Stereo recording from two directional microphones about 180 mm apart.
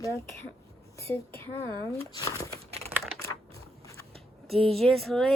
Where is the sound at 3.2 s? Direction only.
15° left (ahead or behind).